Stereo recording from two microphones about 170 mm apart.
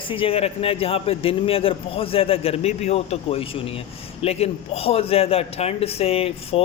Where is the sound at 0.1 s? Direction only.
35° left (ahead or behind).